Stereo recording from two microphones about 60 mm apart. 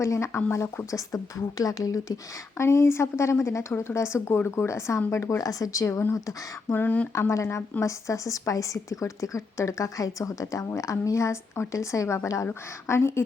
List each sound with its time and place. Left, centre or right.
0.0 s a woman's voice: left
2.6 s a woman's voice: left
5.4 s speech: left
6.7 s speech: left
7.1 s a woman's voice: left